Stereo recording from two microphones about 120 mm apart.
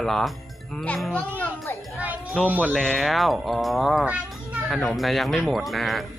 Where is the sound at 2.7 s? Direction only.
5° left (ahead or behind).